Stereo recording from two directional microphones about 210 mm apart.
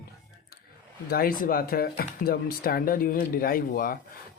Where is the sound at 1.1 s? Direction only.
45° left (ahead or behind).